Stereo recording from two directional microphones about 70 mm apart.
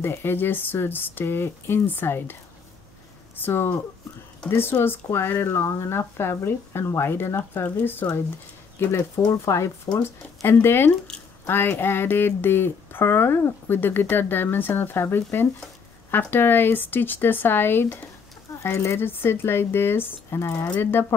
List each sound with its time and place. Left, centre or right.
0.0 s speech: left
3.3 s speech: left
9.3 s speech: left
10.0 s speech: left
18.6 s speech: left